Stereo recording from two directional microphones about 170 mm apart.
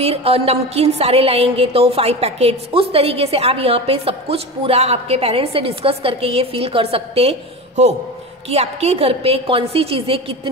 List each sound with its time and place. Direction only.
0.0 s a woman's voice: 35° right (ahead or behind)